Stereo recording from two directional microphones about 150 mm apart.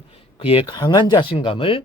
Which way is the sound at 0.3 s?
40° left (ahead or behind).